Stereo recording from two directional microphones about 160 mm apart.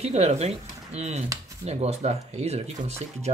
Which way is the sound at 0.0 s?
40° right (ahead or behind).